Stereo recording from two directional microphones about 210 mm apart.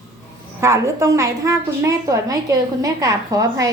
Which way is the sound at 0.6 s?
15° right (ahead or behind).